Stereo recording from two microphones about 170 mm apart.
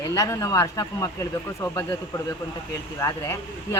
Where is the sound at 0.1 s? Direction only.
20° left (ahead or behind).